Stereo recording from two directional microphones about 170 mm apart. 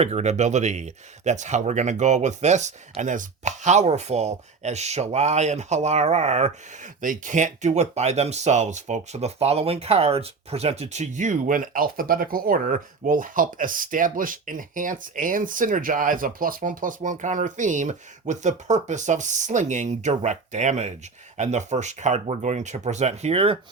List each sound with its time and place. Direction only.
0.0 s speech: 40° right (ahead or behind)